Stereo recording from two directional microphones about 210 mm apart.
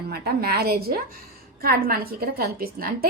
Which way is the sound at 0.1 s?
45° right (ahead or behind).